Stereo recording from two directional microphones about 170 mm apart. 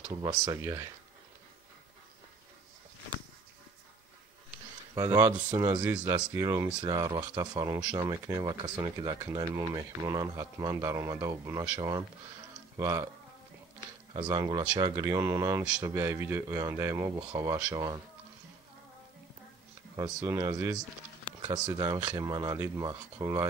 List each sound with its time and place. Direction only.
0.1 s speech: 20° right (ahead or behind)
4.9 s speech: 20° right (ahead or behind)
12.7 s speech: 15° right (ahead or behind)
14.1 s speech: 25° right (ahead or behind)
20.0 s speech: 20° right (ahead or behind)